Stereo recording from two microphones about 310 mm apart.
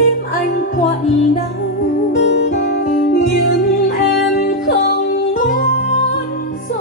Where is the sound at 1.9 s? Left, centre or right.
Left.